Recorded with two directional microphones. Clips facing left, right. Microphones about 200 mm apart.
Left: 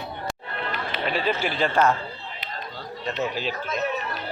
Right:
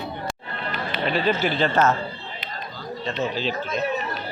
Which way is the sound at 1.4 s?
10° left (ahead or behind).